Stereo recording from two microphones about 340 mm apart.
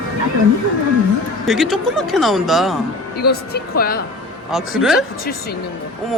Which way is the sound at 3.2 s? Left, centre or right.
Left.